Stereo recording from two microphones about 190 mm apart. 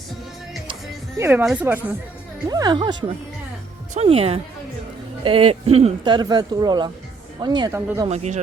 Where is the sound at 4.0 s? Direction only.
30° right (ahead or behind).